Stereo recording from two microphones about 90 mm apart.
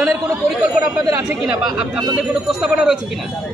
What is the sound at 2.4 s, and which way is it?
Speech, 10° right (ahead or behind).